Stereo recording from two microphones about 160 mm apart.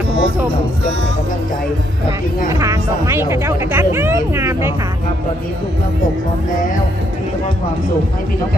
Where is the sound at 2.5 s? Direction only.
20° right (ahead or behind).